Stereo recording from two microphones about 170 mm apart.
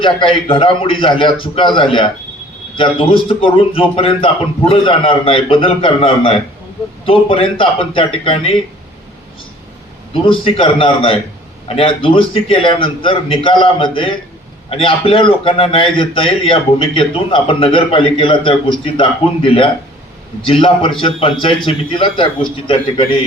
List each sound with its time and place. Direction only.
0.0 s a man's voice: 30° left (ahead or behind)
10.2 s a man's voice: 30° left (ahead or behind)